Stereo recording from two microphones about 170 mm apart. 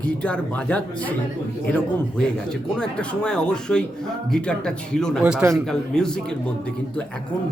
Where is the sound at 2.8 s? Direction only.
5° left (ahead or behind).